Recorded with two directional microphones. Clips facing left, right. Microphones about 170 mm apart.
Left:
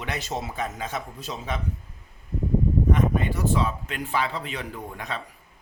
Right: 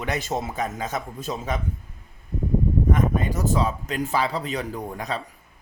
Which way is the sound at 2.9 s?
45° right (ahead or behind).